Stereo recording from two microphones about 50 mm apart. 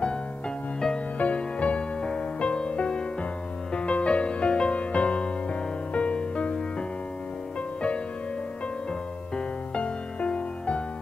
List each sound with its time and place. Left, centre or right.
1.1 s music: left
9.8 s music: left